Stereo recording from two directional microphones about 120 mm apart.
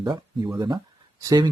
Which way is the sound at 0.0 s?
35° right (ahead or behind).